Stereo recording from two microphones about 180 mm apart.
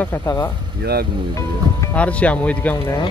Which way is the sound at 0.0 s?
10° left (ahead or behind).